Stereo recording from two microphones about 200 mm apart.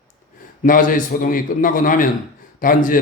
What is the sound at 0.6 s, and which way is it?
A man's voice, 40° left (ahead or behind).